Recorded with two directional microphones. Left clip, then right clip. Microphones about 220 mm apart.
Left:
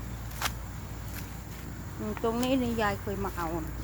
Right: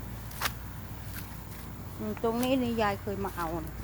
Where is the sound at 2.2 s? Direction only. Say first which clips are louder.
Even; 10° right (ahead or behind).